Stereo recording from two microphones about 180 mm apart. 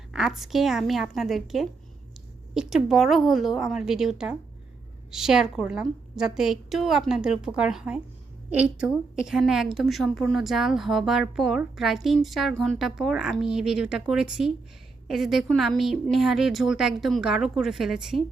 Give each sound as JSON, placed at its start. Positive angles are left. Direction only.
{"t": 0.1, "sound": "a woman's voice", "side_deg": -5}